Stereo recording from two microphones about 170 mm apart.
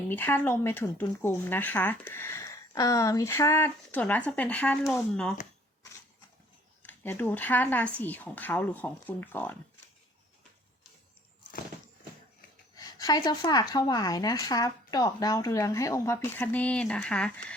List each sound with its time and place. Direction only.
0.1 s speech: 10° left (ahead or behind)
6.8 s speech: 10° left (ahead or behind)
12.7 s a woman's voice: 20° left (ahead or behind); by 17.3 s 5° left (ahead or behind)